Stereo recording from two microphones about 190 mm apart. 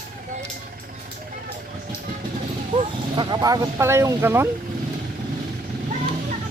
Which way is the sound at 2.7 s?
25° right (ahead or behind).